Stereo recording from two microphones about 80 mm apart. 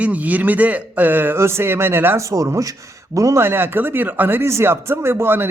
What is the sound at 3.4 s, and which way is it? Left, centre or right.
Speech, right.